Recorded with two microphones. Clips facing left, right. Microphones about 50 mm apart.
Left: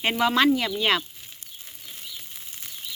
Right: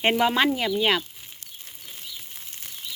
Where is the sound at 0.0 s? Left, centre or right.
Right.